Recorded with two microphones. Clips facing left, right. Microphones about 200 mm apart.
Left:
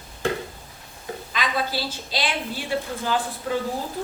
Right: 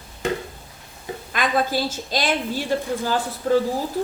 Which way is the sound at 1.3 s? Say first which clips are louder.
Right 5 dB; 50° right (ahead or behind).